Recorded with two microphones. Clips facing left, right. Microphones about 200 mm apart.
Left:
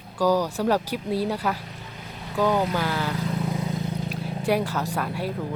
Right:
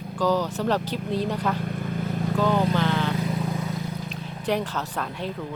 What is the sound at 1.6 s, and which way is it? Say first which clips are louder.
Vehicle: right 12 dB; 55° right (ahead or behind).